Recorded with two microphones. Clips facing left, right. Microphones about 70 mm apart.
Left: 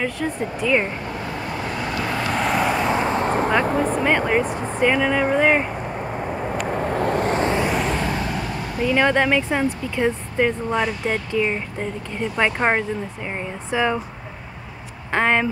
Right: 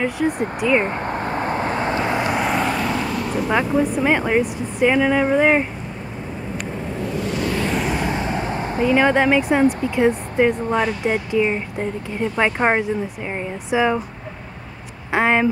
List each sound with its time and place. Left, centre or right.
0.2 s speech: centre
0.8 s vehicle: right
2.3 s vehicle: centre
2.8 s vehicle: left
3.6 s speech: left
4.0 s speech: centre
4.5 s speech: left
4.8 s speech: centre
6.5 s vehicle: left
7.9 s vehicle: centre
8.8 s speech: centre
15.1 s a sound: centre